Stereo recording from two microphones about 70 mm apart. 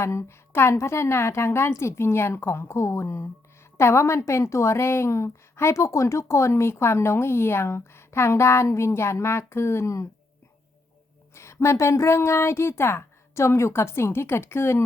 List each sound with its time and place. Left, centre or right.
0.0 s a woman's voice: left
11.3 s a woman's voice: left